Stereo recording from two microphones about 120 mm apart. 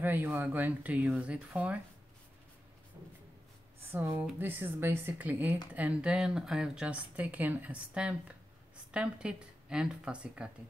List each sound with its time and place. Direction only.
0.0 s speech: 15° right (ahead or behind)
3.8 s speech: 20° right (ahead or behind)